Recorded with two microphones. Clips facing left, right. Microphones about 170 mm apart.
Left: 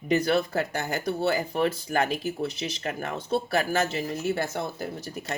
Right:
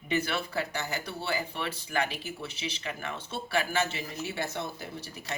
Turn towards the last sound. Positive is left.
turn(degrees=50)  # may be behind; listen again after turning